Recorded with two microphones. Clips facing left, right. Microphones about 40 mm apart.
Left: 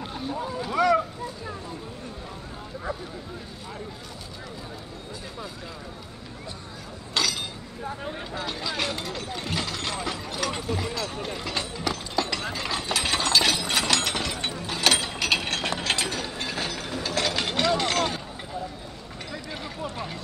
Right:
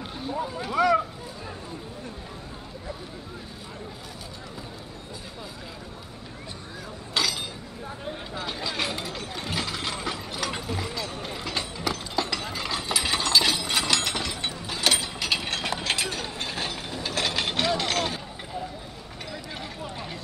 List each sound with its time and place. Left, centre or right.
0.0 s boat: centre
0.7 s a sound: centre
7.2 s a sound: centre
7.8 s speech: centre
8.4 s mechanisms: centre
11.2 s clip-clop: centre
12.6 s ratchet: centre
13.9 s a sound: centre
15.7 s mechanisms: centre
16.4 s ratchet: centre
17.0 s mechanisms: centre
19.3 s a sound: centre